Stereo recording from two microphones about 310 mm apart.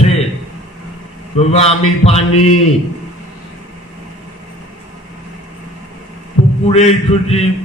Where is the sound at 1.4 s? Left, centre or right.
Centre.